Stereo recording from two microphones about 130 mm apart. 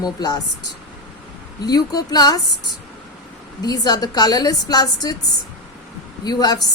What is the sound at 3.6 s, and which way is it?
Speech, 30° left (ahead or behind).